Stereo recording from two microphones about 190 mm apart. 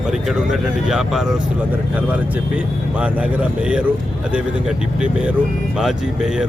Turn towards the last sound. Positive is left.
turn(degrees=-5)  # may be behind; listen again after turning